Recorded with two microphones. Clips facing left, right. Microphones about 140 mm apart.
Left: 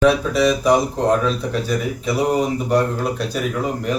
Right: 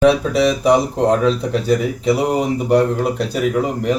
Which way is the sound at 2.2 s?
15° right (ahead or behind).